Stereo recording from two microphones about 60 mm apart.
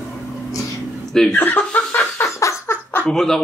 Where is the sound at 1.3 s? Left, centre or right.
Left.